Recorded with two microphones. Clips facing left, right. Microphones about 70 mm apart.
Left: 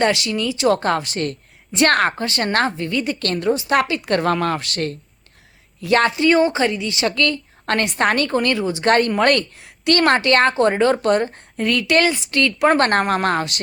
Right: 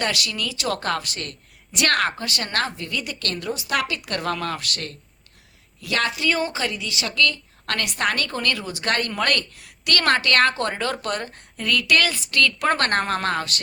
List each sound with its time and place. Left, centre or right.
0.0 s a woman's voice: left